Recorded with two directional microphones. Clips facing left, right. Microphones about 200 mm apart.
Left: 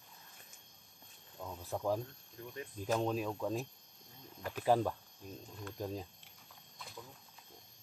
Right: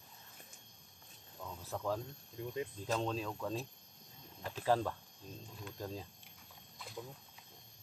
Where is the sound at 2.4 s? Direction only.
20° right (ahead or behind).